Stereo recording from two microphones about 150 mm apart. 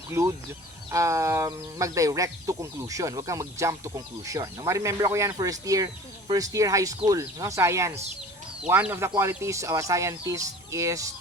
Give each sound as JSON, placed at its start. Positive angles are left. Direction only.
{"t": 0.1, "sound": "speech", "side_deg": -20}